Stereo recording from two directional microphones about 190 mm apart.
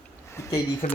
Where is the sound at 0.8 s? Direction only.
35° left (ahead or behind).